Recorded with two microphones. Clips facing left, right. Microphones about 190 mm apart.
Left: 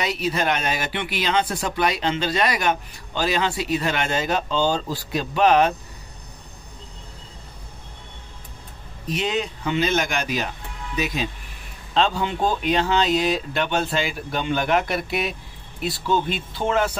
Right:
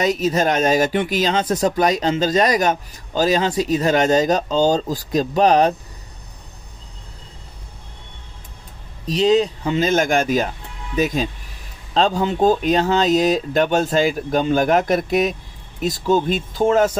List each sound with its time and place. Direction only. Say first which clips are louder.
0.0 s speech: right 6 dB; 45° right (ahead or behind)
9.0 s speech: right 9 dB; 35° right (ahead or behind)